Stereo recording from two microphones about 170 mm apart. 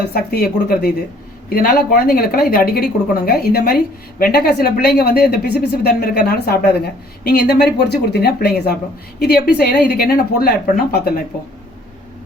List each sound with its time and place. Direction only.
0.0 s a woman's voice: 65° left (ahead or behind)